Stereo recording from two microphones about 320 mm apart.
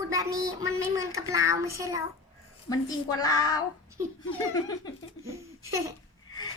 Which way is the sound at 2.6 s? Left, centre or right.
Centre.